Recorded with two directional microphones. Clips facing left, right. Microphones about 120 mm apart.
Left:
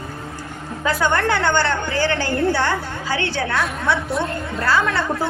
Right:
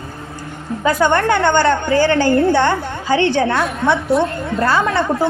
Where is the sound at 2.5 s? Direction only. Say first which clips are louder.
Right 6 dB; 25° right (ahead or behind).